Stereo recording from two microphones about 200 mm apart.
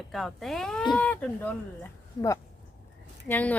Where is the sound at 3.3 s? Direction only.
10° left (ahead or behind).